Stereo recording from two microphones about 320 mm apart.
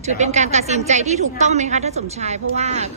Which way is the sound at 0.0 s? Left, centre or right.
Right.